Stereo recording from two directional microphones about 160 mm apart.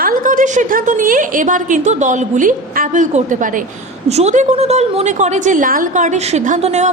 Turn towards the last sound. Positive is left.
turn(degrees=-45)  # may be behind; listen again after turning